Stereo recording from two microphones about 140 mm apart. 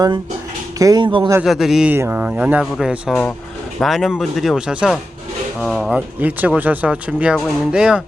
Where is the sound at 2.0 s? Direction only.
15° right (ahead or behind); by 5.9 s centre (ahead or behind).